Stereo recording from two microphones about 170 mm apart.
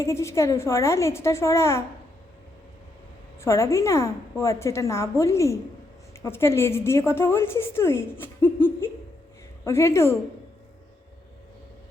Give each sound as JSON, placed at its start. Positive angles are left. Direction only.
{"t": 0.0, "sound": "a woman's voice", "side_deg": 15}
{"t": 3.4, "sound": "a woman's voice", "side_deg": 15}